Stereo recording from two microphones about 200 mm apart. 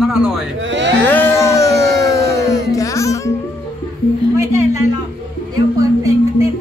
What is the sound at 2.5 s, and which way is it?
Music, 15° left (ahead or behind).